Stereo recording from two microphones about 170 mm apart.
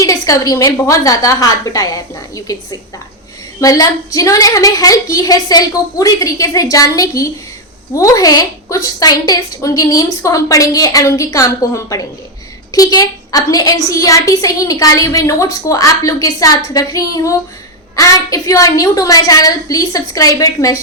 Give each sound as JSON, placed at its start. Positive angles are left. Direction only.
{"t": 0.0, "sound": "a woman's voice", "side_deg": 20}